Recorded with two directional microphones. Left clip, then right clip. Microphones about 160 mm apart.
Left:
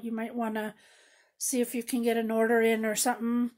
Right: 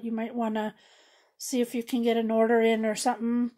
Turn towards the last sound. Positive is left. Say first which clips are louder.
# right 2 dB
turn(degrees=-25)  # may be behind; listen again after turning